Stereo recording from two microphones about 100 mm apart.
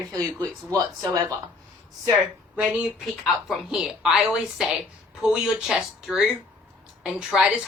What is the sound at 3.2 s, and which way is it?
A woman's voice, centre (ahead or behind).